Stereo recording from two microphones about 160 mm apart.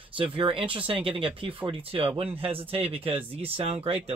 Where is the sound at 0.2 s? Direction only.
35° right (ahead or behind).